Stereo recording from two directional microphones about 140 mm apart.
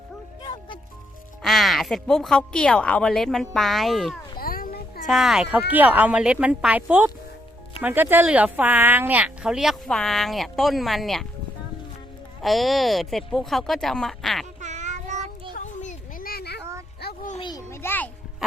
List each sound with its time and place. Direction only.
1.4 s speech: centre (ahead or behind)
4.4 s a sound: 90° left
5.0 s speech: centre (ahead or behind)
12.4 s speech: centre (ahead or behind)
14.6 s child singing: 60° right (ahead or behind)
15.5 s a sound: 60° left (ahead or behind); by 16.4 s 85° left
17.7 s music: 15° left (ahead or behind)